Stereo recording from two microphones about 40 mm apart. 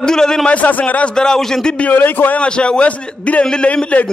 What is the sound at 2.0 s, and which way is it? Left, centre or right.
Speech, left.